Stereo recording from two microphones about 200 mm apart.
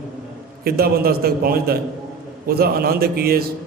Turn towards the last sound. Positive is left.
turn(degrees=-50)  # may be behind; listen again after turning